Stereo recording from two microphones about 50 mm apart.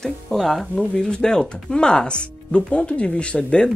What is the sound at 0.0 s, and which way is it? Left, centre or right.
Speech, centre.